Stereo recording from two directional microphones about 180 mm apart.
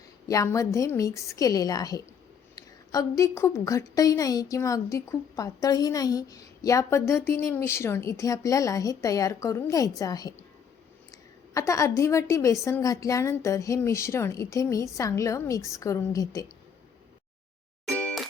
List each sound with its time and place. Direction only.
0.3 s a woman's voice: 20° left (ahead or behind)
17.8 s music: 5° left (ahead or behind)